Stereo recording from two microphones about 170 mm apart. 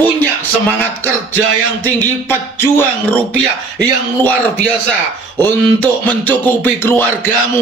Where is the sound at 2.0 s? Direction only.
10° left (ahead or behind).